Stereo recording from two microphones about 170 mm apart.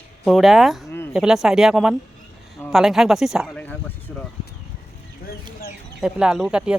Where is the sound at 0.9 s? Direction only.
15° left (ahead or behind).